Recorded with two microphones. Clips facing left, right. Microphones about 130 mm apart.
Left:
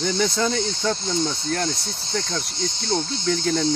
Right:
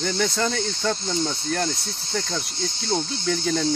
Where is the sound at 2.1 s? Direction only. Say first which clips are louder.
Left 1 dB; 5° right (ahead or behind).